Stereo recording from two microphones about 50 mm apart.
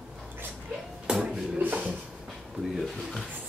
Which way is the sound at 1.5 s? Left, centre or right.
Right.